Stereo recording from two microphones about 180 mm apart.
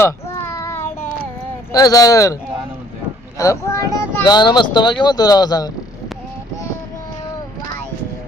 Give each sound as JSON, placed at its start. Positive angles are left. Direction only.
{"t": 0.0, "sound": "child singing", "side_deg": 15}
{"t": 1.7, "sound": "speech", "side_deg": 20}